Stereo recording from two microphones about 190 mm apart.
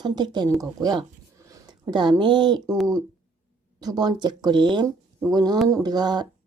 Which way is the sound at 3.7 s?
20° right (ahead or behind).